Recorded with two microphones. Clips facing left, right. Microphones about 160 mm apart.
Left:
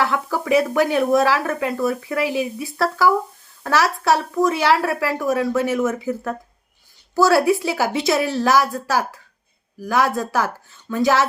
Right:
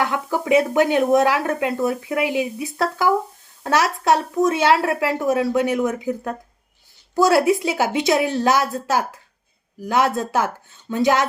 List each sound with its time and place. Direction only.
0.0 s speech: 20° right (ahead or behind)